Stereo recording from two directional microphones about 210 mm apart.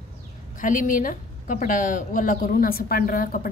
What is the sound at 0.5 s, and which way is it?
A woman's voice, 40° left (ahead or behind).